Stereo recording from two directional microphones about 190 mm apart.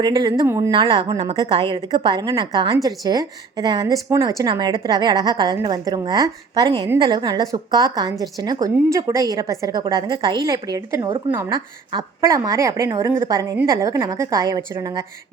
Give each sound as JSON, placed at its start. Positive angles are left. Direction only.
{"t": 0.0, "sound": "a woman's voice", "side_deg": -20}
{"t": 0.7, "sound": "a woman's voice", "side_deg": -25}